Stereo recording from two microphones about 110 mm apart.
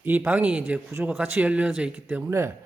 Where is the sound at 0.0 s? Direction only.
15° right (ahead or behind).